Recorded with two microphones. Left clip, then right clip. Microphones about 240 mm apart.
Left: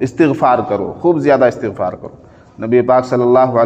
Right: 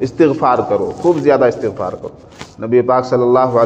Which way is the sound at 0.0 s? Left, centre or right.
Left.